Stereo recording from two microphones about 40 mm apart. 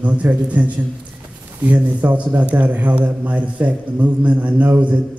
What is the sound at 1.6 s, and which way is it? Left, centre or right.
A man's voice, right.